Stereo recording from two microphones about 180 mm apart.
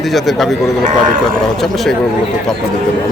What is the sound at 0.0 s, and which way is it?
Speech, centre (ahead or behind).